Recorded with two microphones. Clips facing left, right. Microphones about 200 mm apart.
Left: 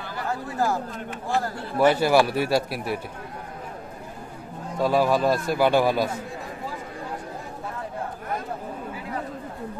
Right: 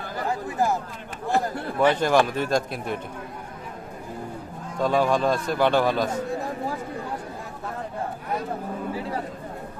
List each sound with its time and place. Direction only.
0.3 s speech: 20° right (ahead or behind)
1.8 s a man's voice: 10° left (ahead or behind)
4.7 s a man's voice: 10° left (ahead or behind)